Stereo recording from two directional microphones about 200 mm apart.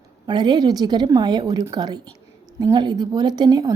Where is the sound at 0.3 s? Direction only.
20° right (ahead or behind).